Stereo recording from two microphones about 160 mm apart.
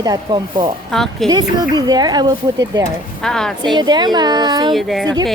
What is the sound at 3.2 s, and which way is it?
Speech, 5° left (ahead or behind).